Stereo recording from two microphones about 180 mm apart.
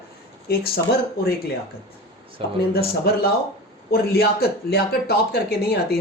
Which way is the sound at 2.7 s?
60° left (ahead or behind).